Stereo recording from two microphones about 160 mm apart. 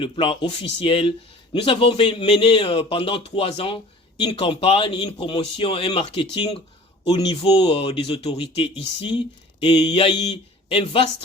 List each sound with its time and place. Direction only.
0.0 s speech: 35° left (ahead or behind)